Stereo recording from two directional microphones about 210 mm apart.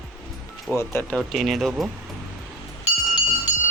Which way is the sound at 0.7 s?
10° left (ahead or behind).